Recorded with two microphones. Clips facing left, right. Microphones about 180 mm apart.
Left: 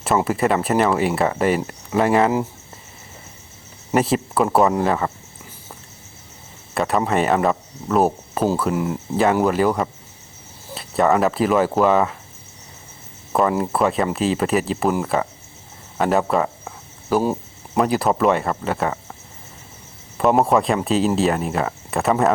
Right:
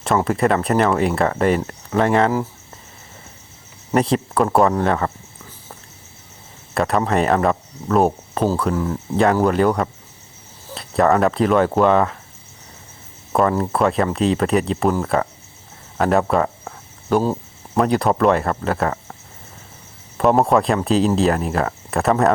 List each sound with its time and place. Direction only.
0.3 s speech: 5° left (ahead or behind)
3.9 s speech: 5° left (ahead or behind)
6.7 s speech: centre (ahead or behind)
8.7 s speech: 15° left (ahead or behind)
9.4 s speech: 5° left (ahead or behind)
13.3 s speech: 5° left (ahead or behind)
16.0 s cricket: centre (ahead or behind)
17.7 s speech: 5° left (ahead or behind)
20.1 s speech: centre (ahead or behind)